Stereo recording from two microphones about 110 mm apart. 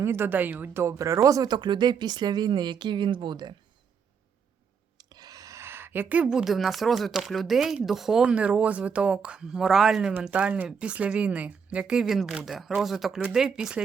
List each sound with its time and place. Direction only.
0.0 s speech: 20° right (ahead or behind); by 3.5 s 45° right (ahead or behind)
4.9 s speech: 40° right (ahead or behind); by 13.8 s 5° right (ahead or behind)